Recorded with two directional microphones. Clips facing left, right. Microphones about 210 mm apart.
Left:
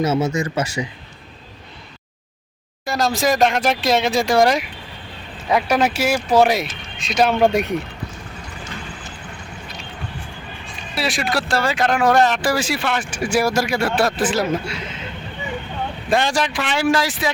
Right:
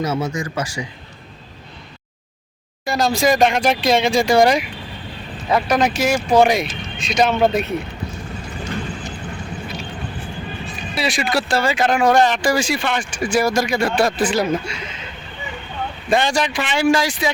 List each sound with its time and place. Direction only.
0.0 s speech: 25° left (ahead or behind)
2.8 s speech: centre (ahead or behind)
5.5 s speech: 10° left (ahead or behind)
10.9 s speech: centre (ahead or behind)
16.0 s speech: centre (ahead or behind)